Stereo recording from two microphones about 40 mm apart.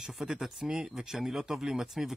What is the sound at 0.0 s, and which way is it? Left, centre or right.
Speech, centre.